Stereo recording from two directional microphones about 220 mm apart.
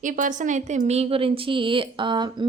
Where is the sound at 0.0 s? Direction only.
35° right (ahead or behind).